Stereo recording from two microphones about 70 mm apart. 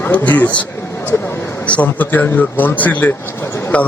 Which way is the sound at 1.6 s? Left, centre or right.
Left.